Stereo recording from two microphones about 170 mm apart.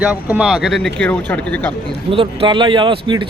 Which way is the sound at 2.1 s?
30° right (ahead or behind).